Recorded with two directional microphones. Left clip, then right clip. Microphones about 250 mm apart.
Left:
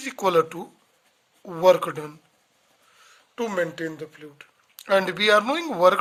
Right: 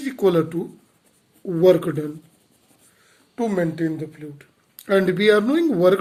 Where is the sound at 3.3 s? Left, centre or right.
Left.